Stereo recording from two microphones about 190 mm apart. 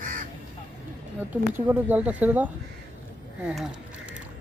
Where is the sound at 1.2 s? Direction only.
10° right (ahead or behind).